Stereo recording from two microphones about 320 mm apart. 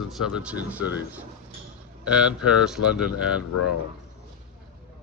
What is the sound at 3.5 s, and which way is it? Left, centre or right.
Speech, left.